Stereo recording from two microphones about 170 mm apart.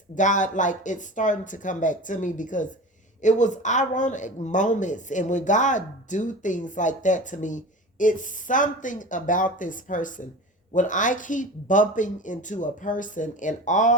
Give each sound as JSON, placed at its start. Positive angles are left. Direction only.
{"t": 0.2, "sound": "speech", "side_deg": 50}